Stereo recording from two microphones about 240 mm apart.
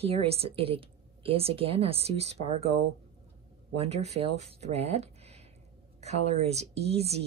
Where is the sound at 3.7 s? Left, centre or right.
Right.